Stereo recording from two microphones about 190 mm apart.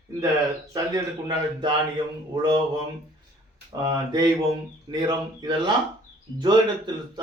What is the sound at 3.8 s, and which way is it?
A man's voice, 20° right (ahead or behind).